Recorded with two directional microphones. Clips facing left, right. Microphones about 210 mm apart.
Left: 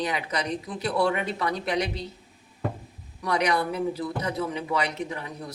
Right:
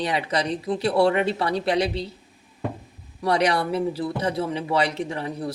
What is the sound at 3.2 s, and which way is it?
Speech, 30° right (ahead or behind).